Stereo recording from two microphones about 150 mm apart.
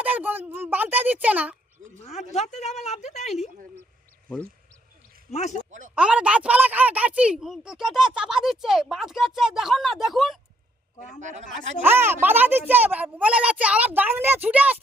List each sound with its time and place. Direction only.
0.0 s speech: 10° right (ahead or behind)
2.0 s a woman's voice: 50° left (ahead or behind)
5.5 s speech: 55° right (ahead or behind)
5.9 s speech: 5° right (ahead or behind)
11.2 s speech: 55° right (ahead or behind)
11.8 s speech: 15° right (ahead or behind)